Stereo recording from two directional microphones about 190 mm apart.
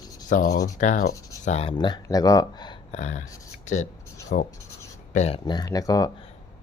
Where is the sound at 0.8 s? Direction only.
40° left (ahead or behind).